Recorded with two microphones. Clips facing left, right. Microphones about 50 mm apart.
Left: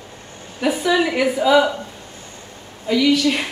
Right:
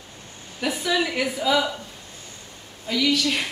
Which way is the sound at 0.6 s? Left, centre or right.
Centre.